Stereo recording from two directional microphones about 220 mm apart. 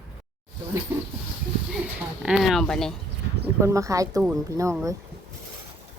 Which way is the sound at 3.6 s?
15° right (ahead or behind).